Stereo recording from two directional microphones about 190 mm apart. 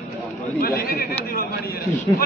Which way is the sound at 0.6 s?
50° left (ahead or behind).